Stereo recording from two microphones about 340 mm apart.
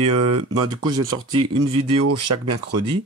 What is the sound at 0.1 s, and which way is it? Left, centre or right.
Speech, right.